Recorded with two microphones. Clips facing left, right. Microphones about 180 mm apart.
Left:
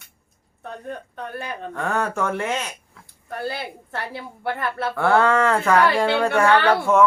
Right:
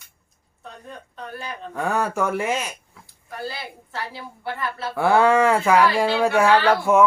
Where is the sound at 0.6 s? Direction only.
55° left (ahead or behind).